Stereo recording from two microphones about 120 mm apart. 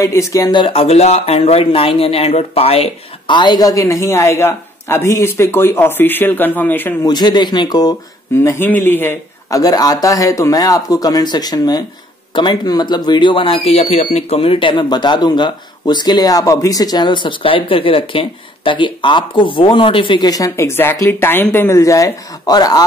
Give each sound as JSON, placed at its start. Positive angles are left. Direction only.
{"t": 0.0, "sound": "a woman's voice", "side_deg": 25}
{"t": 0.5, "sound": "speech", "side_deg": 45}
{"t": 3.3, "sound": "a woman's voice", "side_deg": 35}
{"t": 7.1, "sound": "speech", "side_deg": 35}
{"t": 8.4, "sound": "speech", "side_deg": 20}
{"t": 9.5, "sound": "speech", "side_deg": 30}